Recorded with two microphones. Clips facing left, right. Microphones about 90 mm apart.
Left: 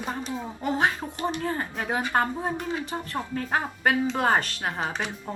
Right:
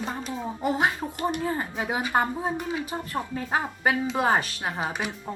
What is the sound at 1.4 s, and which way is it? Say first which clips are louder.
Speech: right 1 dB; 10° right (ahead or behind).